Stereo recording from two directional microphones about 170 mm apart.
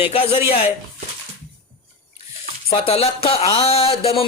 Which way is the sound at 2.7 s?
35° left (ahead or behind).